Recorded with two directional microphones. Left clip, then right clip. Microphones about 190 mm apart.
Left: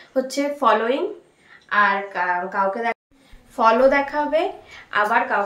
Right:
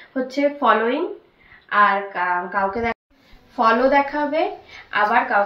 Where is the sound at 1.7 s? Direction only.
15° left (ahead or behind).